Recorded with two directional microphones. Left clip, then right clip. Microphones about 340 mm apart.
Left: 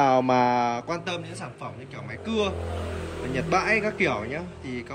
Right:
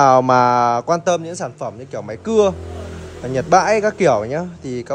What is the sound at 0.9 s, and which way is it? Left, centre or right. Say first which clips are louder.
Speech: right 13 dB; centre.